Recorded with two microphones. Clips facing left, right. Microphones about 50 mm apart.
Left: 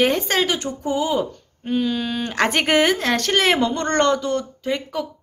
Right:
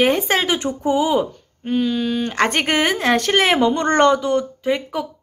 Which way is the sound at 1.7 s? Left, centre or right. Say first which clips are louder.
Right 2 dB; centre.